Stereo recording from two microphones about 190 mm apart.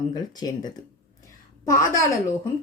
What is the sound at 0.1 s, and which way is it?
Speech, 20° left (ahead or behind).